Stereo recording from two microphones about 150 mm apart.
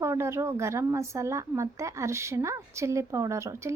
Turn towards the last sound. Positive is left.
turn(degrees=-20)  # may be behind; listen again after turning